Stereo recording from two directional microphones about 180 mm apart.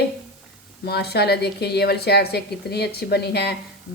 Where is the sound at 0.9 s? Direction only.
65° left (ahead or behind).